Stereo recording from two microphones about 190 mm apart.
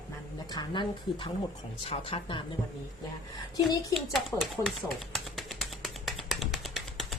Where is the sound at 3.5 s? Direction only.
20° left (ahead or behind).